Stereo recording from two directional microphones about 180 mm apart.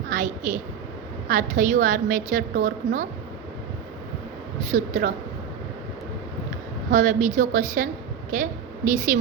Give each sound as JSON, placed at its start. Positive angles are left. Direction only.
{"t": 0.1, "sound": "a woman's voice", "side_deg": -45}
{"t": 4.7, "sound": "a woman's voice", "side_deg": -45}
{"t": 6.9, "sound": "a woman's voice", "side_deg": -45}